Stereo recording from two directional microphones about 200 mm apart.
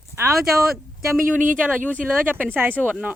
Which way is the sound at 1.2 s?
40° right (ahead or behind).